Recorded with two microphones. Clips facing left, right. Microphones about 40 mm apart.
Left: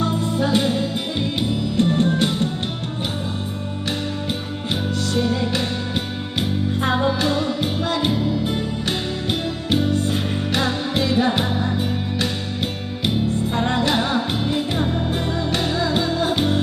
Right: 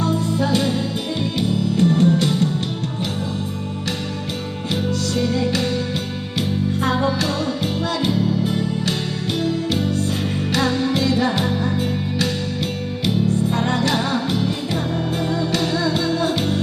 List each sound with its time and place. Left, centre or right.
0.0 s music: left
4.7 s music: left
6.8 s music: centre
13.5 s music: centre